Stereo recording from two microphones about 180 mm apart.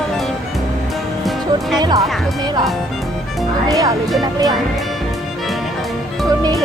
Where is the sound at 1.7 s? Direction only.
20° right (ahead or behind).